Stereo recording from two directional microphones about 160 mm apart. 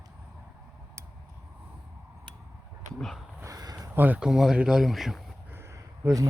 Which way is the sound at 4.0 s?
10° right (ahead or behind).